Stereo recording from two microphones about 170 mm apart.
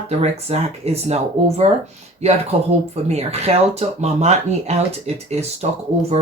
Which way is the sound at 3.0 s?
35° right (ahead or behind).